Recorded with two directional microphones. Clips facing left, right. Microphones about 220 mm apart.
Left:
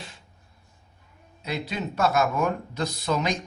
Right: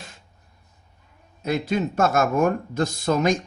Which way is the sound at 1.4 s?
50° right (ahead or behind).